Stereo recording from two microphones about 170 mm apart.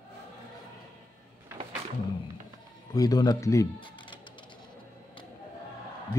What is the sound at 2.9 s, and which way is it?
Speech, 20° left (ahead or behind).